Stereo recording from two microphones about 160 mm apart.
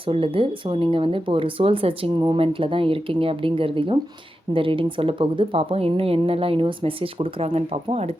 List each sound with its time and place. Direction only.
0.0 s speech: 35° right (ahead or behind)